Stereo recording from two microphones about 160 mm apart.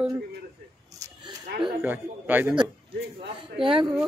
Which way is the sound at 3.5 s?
35° right (ahead or behind).